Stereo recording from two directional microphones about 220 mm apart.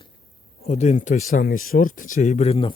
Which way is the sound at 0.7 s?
30° left (ahead or behind).